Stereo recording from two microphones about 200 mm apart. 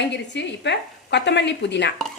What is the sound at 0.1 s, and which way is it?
A woman's voice, 60° left (ahead or behind).